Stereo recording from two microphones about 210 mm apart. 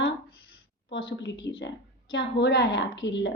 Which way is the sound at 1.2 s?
55° left (ahead or behind).